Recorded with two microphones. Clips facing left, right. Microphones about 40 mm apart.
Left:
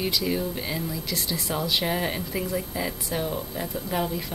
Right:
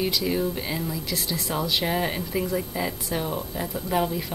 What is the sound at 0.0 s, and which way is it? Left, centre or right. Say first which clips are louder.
Speech: right 2 dB; centre.